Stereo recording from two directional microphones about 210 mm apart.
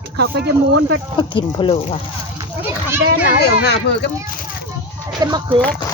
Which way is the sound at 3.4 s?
50° left (ahead or behind).